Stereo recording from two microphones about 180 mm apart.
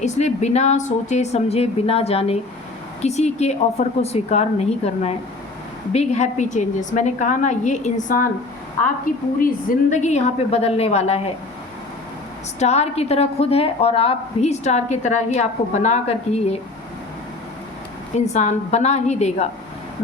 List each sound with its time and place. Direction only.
0.0 s a woman's voice: 40° left (ahead or behind)
12.5 s a woman's voice: 35° left (ahead or behind)
18.3 s a woman's voice: 40° left (ahead or behind)